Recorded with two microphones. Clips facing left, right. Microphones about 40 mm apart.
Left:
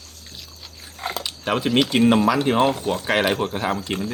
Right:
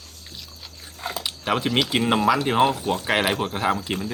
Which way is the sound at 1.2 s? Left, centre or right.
Centre.